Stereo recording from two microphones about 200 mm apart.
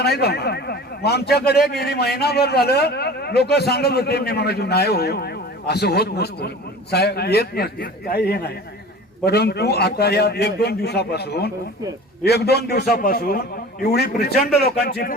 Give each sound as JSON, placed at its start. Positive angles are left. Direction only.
{"t": 0.0, "sound": "a man's voice", "side_deg": 55}